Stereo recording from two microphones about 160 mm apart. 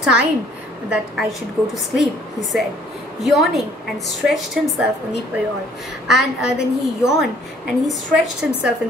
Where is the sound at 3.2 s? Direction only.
Centre (ahead or behind).